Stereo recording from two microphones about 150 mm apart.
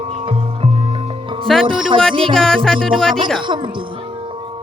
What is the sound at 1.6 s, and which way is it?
Music, 35° right (ahead or behind).